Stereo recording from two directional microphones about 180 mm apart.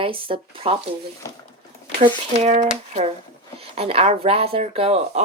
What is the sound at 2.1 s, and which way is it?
Speech, 35° right (ahead or behind).